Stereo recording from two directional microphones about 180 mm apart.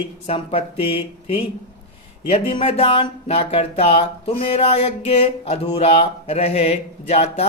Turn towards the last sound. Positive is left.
turn(degrees=35)  # may be behind; listen again after turning